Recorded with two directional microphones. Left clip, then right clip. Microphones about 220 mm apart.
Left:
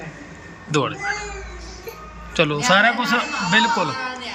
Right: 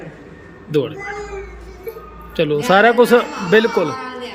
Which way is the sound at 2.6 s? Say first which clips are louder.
Right 6 dB; 20° right (ahead or behind).